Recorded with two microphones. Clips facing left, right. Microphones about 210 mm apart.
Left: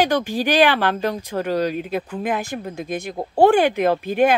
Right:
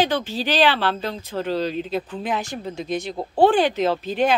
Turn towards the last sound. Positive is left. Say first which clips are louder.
# left 3 dB
turn(degrees=10)  # may be behind; listen again after turning